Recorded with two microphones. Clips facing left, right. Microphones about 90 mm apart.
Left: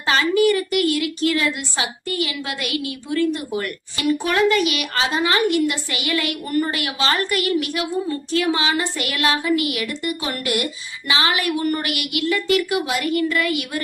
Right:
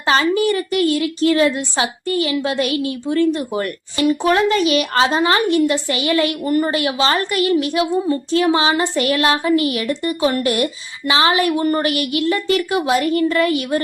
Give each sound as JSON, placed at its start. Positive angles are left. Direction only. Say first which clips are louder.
{"t": 0.0, "sound": "a woman's voice", "louder": "right 1 dB", "side_deg": -30}